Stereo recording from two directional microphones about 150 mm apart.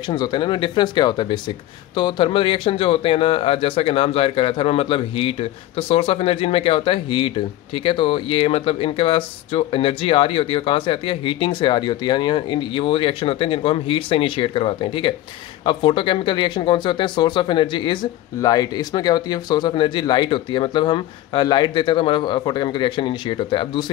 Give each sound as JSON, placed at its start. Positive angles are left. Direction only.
{"t": 0.1, "sound": "speech", "side_deg": 30}